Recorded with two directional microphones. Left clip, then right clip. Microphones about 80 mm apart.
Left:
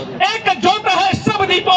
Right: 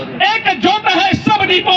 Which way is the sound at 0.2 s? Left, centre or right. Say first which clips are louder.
Right 2 dB; left.